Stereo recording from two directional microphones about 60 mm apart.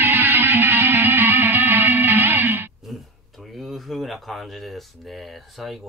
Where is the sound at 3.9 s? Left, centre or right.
Centre.